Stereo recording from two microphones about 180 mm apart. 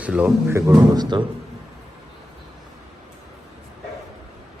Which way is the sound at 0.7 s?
20° right (ahead or behind).